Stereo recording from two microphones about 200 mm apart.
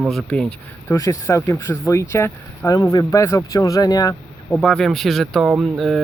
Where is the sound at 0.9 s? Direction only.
15° left (ahead or behind).